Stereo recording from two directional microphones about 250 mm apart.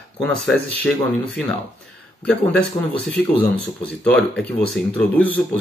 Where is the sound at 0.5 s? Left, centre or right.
Centre.